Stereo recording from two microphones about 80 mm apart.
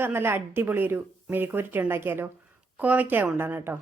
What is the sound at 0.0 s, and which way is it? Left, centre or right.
A woman's voice, right.